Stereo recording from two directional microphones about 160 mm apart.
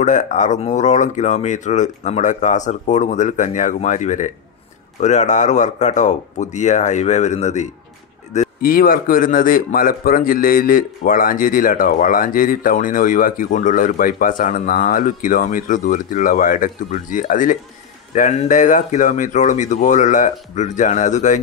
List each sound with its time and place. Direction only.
0.0 s speech: 50° left (ahead or behind)
8.6 s speech: 65° left (ahead or behind)